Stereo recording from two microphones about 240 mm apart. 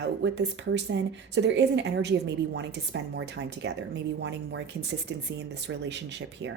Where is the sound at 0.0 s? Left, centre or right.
Right.